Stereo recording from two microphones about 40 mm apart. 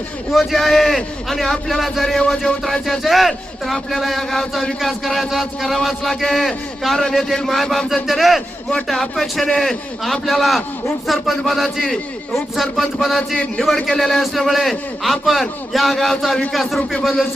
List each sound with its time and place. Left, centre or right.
0.3 s a man's voice: centre
2.1 s music: centre
2.8 s a man's voice: centre